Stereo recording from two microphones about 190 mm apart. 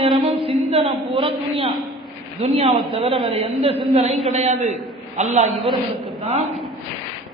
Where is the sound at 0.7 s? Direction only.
30° right (ahead or behind).